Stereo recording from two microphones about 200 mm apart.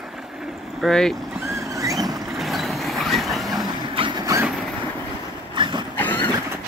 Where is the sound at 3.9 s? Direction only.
25° right (ahead or behind).